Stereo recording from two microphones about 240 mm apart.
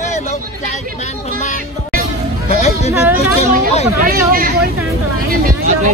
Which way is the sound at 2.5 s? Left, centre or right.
Left.